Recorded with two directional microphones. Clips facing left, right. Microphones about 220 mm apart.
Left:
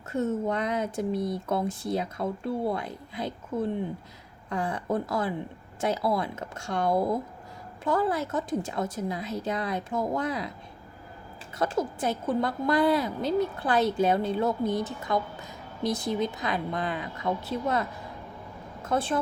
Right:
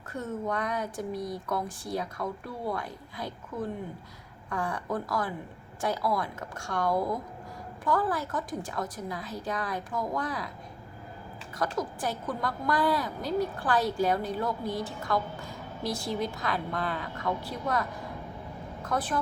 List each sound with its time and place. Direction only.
0.1 s a woman's voice: 25° left (ahead or behind)
11.5 s a woman's voice: 25° left (ahead or behind)